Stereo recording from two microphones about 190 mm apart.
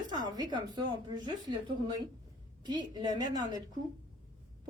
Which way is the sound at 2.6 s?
25° right (ahead or behind).